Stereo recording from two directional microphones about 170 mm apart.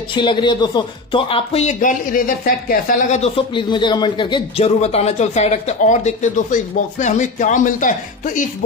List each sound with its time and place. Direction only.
0.1 s a man's voice: 30° left (ahead or behind); by 3.2 s 55° left (ahead or behind)
3.2 s a man's voice: 30° left (ahead or behind); by 8.5 s 50° left (ahead or behind)